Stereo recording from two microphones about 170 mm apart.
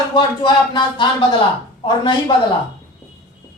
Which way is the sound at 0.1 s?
25° left (ahead or behind).